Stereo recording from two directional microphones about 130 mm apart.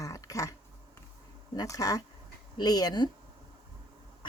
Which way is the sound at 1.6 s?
25° left (ahead or behind).